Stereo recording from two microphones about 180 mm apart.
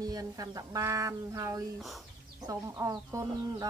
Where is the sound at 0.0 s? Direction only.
20° right (ahead or behind).